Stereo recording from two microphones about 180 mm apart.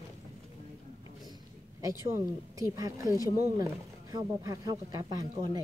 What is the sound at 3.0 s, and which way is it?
Speech, 20° left (ahead or behind).